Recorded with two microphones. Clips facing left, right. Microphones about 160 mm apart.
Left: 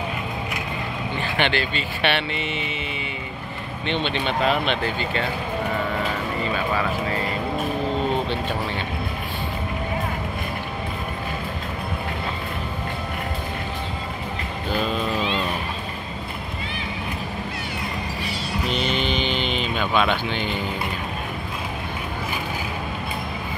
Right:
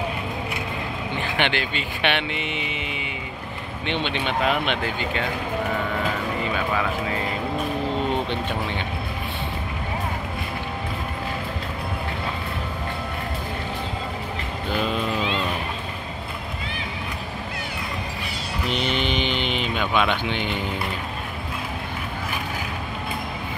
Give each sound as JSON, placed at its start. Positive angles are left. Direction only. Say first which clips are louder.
{"t": 1.1, "sound": "speech", "louder": "left 1 dB", "side_deg": -15}
{"t": 3.8, "sound": "speech", "louder": "left 1 dB", "side_deg": -15}
{"t": 18.9, "sound": "speech", "louder": "even", "side_deg": -15}